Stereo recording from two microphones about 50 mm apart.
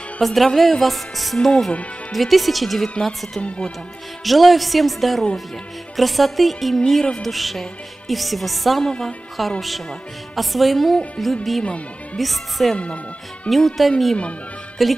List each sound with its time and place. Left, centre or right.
0.2 s speech: centre
3.3 s speech: left
4.2 s speech: centre
12.7 s speech: left
13.5 s speech: centre